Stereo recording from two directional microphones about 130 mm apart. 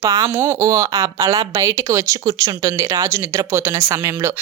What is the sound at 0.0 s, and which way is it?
Speech, 25° right (ahead or behind).